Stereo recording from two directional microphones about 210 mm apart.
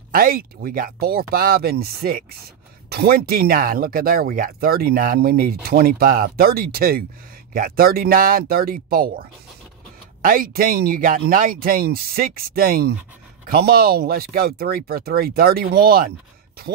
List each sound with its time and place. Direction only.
0.1 s speech: 45° right (ahead or behind)
10.2 s speech: 40° right (ahead or behind)